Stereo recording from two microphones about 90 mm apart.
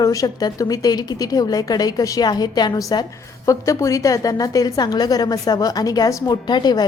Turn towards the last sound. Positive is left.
turn(degrees=50)  # may be behind; listen again after turning